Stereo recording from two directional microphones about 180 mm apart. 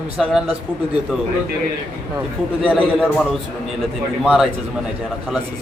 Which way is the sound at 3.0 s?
5° left (ahead or behind).